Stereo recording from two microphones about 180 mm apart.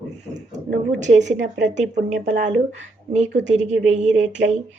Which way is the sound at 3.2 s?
80° right.